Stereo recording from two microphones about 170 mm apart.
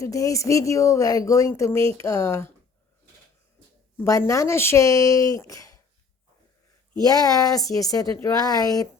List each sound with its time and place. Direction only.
0.0 s speech: 20° left (ahead or behind)
3.9 s speech: 15° left (ahead or behind)
7.0 s speech: 20° left (ahead or behind)